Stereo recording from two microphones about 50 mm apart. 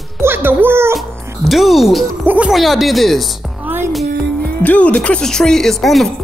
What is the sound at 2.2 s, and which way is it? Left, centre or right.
Speech, right.